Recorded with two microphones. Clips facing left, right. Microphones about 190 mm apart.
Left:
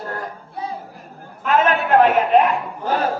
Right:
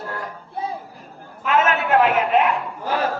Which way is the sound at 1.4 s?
40° left (ahead or behind).